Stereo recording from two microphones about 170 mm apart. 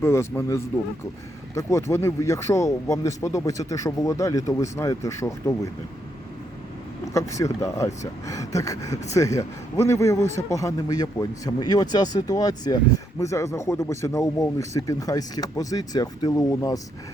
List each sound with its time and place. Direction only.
0.0 s a man's voice: 15° left (ahead or behind)
7.0 s a man's voice: 20° left (ahead or behind)